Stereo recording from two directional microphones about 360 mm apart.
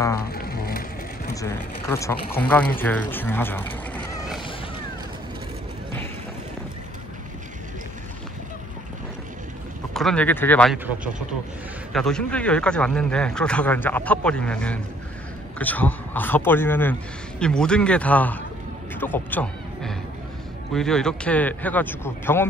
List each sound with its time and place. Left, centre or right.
0.3 s vehicle: left
1.3 s speech: centre
9.9 s speech: centre
11.9 s speech: centre
18.9 s music: centre
20.7 s speech: centre